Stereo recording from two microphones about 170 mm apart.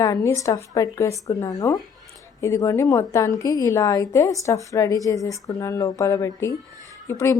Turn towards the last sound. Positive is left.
turn(degrees=15)  # may be behind; listen again after turning